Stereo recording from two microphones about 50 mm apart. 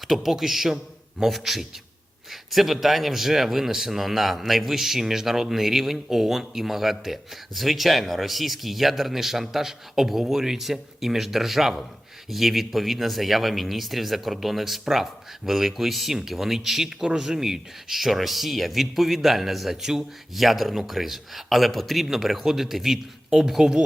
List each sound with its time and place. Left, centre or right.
0.1 s speech: centre